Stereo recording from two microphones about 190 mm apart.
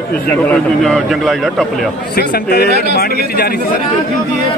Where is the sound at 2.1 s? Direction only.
50° left (ahead or behind).